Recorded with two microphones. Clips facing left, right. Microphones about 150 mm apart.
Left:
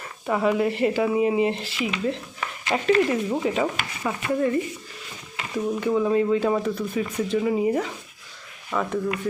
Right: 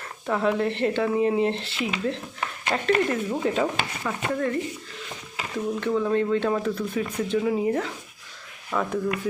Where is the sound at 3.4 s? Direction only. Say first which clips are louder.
Even; centre (ahead or behind).